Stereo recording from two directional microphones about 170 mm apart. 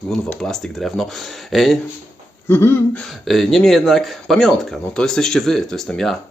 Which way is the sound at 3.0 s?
Centre (ahead or behind).